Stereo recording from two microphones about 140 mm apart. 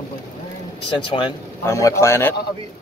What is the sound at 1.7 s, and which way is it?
Speech, 20° left (ahead or behind).